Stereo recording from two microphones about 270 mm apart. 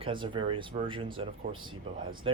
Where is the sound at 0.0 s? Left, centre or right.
Centre.